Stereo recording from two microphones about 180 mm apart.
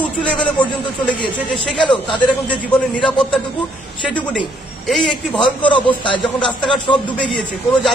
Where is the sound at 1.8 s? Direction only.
25° left (ahead or behind).